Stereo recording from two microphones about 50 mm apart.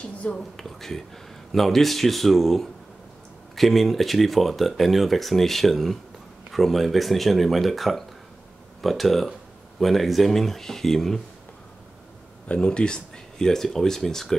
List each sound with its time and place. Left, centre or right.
0.0 s a sound: left
0.6 s speech: centre
12.4 s speech: centre